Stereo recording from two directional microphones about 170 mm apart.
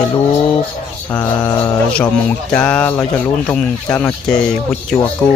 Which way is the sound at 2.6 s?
5° left (ahead or behind).